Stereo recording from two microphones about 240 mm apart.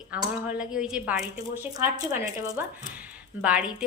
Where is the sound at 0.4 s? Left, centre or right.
Centre.